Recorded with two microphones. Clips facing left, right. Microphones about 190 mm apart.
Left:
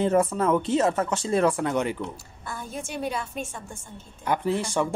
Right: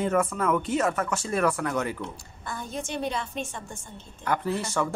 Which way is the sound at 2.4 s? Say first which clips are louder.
Right 1 dB; 5° left (ahead or behind).